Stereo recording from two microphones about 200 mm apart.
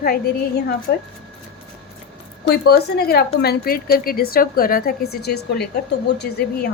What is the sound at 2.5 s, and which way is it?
A woman's voice, 55° left (ahead or behind).